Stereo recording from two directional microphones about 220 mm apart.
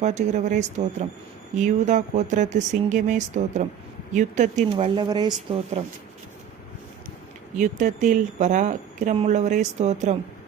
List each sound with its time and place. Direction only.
0.0 s a woman's voice: 30° right (ahead or behind)
4.9 s speech: 20° right (ahead or behind)
7.6 s a woman's voice: 35° right (ahead or behind)